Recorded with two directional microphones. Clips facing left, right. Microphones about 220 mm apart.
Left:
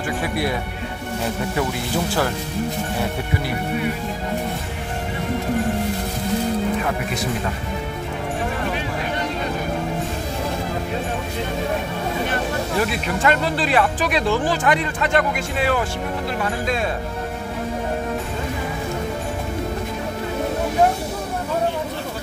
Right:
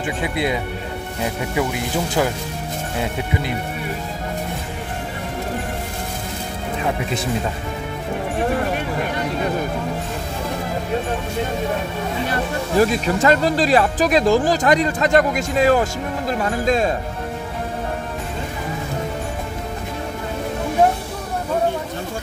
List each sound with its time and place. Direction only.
0.2 s speech: 20° right (ahead or behind)
12.7 s speech: 40° right (ahead or behind)